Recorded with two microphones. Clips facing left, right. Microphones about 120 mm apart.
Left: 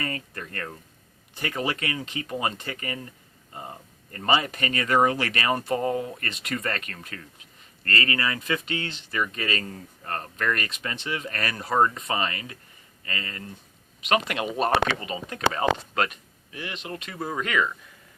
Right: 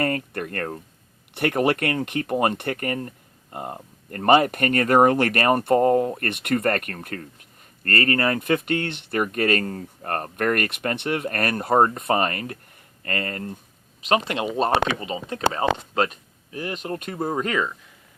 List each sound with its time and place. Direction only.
0.0 s speech: 60° right (ahead or behind)
14.1 s speech: 30° right (ahead or behind)